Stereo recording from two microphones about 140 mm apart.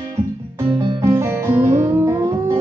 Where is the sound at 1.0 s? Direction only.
20° right (ahead or behind).